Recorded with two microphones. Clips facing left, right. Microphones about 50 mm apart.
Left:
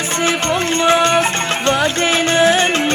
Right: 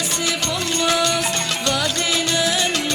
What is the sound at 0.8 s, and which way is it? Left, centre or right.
Music, left.